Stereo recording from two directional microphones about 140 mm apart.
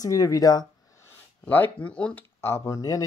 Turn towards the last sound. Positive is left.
turn(degrees=25)  # may be behind; listen again after turning